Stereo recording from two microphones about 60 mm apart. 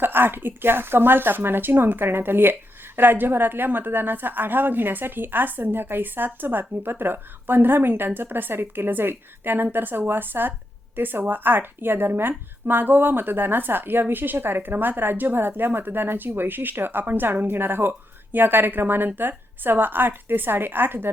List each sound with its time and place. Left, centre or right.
0.0 s a woman's voice: right